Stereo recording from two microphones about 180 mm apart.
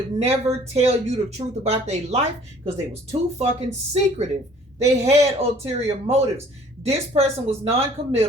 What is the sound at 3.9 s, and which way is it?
Speech, 35° right (ahead or behind).